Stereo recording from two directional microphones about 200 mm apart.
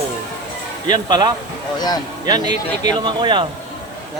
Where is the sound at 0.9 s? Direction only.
20° right (ahead or behind).